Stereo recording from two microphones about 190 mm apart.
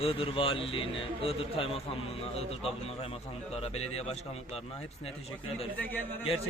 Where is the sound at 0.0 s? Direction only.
30° left (ahead or behind).